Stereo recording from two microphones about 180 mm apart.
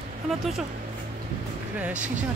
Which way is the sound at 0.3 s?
Centre (ahead or behind).